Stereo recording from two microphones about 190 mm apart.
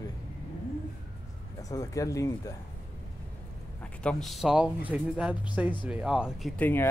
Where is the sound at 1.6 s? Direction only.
20° left (ahead or behind).